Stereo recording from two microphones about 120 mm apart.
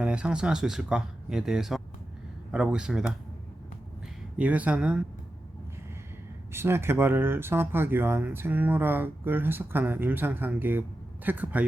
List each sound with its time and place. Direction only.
0.0 s speech: 10° right (ahead or behind)
4.4 s speech: 10° right (ahead or behind)
6.5 s speech: 20° right (ahead or behind)